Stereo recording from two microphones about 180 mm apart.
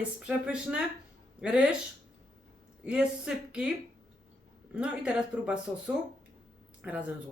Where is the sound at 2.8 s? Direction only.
5° right (ahead or behind).